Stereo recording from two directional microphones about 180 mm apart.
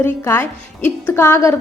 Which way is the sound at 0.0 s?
10° left (ahead or behind).